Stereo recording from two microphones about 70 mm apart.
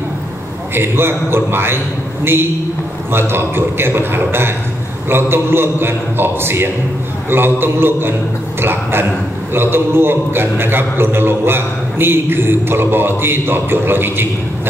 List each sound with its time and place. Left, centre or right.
0.7 s a man's voice: right
3.1 s a man's voice: right